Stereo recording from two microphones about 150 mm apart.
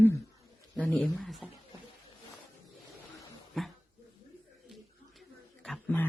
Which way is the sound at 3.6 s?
Centre (ahead or behind).